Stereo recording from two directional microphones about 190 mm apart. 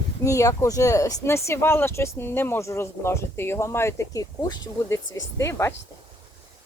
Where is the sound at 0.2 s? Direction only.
15° left (ahead or behind).